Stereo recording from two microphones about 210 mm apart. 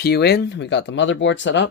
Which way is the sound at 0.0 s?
50° left (ahead or behind).